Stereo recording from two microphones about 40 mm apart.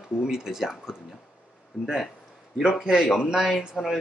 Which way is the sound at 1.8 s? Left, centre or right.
Right.